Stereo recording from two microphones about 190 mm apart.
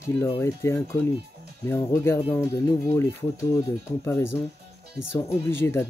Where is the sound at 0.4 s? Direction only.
15° left (ahead or behind).